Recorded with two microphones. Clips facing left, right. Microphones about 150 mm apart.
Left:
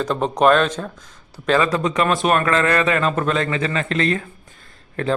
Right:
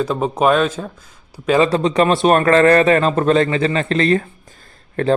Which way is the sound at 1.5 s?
30° right (ahead or behind).